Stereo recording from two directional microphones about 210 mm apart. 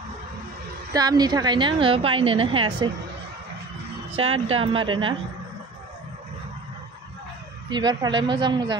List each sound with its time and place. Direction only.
0.9 s a woman's voice: 20° right (ahead or behind)
4.2 s a woman's voice: 30° right (ahead or behind)
7.7 s a woman's voice: 20° right (ahead or behind)